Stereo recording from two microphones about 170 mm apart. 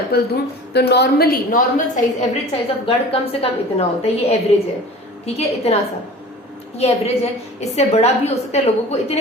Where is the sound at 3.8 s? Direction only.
35° left (ahead or behind).